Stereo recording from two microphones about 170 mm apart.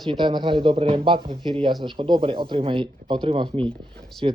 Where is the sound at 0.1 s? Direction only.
25° right (ahead or behind).